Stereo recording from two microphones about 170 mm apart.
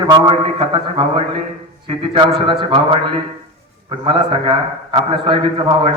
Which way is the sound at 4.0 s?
30° right (ahead or behind).